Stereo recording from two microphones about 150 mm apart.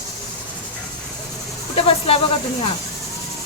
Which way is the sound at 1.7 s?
40° left (ahead or behind).